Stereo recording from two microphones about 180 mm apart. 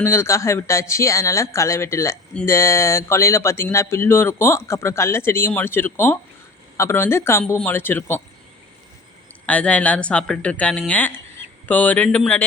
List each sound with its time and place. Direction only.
0.0 s speech: 15° left (ahead or behind)
9.5 s speech: 5° left (ahead or behind)